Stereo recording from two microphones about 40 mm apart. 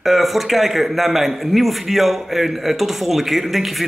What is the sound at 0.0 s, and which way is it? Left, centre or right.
A man's voice, centre.